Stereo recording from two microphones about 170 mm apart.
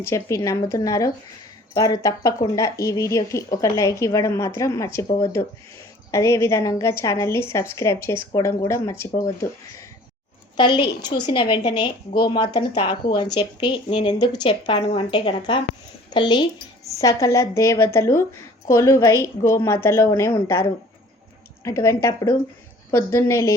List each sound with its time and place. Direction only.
0.0 s speech: 15° left (ahead or behind)
6.1 s a woman's voice: 15° left (ahead or behind)
21.6 s a woman's voice: 15° left (ahead or behind)